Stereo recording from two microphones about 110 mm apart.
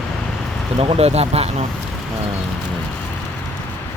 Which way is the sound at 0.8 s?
70° right (ahead or behind).